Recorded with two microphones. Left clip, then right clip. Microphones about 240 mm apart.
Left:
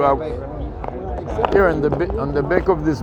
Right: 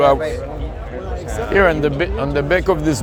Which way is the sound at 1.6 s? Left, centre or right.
Right.